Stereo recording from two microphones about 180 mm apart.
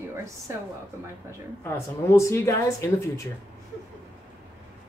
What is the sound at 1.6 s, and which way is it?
Speech, 15° left (ahead or behind).